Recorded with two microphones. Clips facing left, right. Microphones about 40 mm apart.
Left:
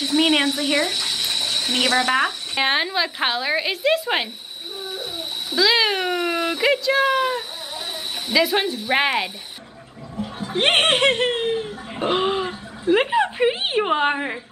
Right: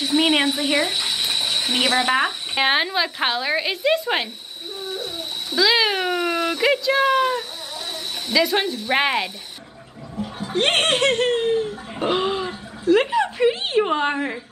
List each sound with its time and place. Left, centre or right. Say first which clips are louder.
0.0 s speech: even; centre
4.7 s cat: right 1 dB; centre
7.9 s speech: even; centre
10.1 s a sound: even; centre
10.5 s speech: left 1 dB; centre